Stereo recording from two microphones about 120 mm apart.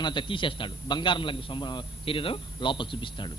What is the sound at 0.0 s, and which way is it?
A man's voice, 40° left (ahead or behind).